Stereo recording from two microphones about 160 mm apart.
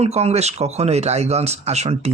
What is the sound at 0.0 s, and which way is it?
Speech, 40° right (ahead or behind).